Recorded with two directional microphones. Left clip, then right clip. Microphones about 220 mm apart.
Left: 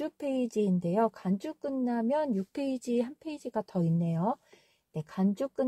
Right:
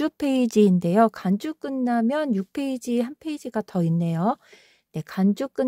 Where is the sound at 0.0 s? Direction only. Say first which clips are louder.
Right 9 dB; 40° right (ahead or behind).